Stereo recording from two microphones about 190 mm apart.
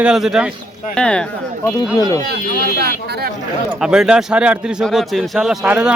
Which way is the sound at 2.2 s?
55° right (ahead or behind).